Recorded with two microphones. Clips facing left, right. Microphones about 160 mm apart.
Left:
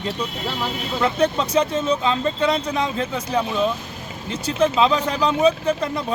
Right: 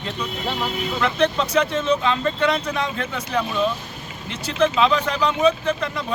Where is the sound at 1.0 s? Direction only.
30° left (ahead or behind).